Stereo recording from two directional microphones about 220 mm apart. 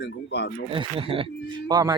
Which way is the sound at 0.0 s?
50° left (ahead or behind).